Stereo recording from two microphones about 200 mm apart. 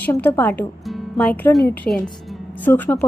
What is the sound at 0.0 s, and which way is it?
A woman's voice, 10° left (ahead or behind).